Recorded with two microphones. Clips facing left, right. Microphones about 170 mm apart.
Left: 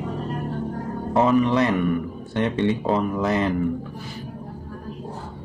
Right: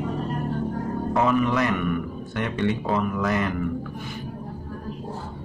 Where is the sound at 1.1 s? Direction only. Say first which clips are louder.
Left 4 dB; 30° left (ahead or behind).